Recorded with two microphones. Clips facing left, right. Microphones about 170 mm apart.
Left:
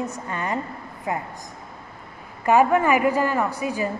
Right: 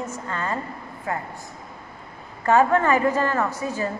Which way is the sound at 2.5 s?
15° left (ahead or behind).